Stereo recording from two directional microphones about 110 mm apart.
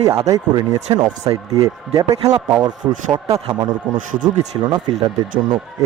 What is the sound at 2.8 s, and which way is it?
Speech, 20° right (ahead or behind).